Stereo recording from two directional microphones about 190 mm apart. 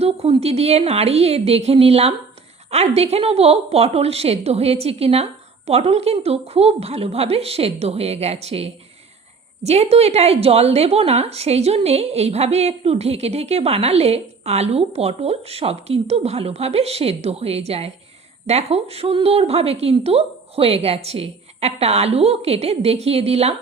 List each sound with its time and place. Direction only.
0.0 s a woman's voice: 30° right (ahead or behind)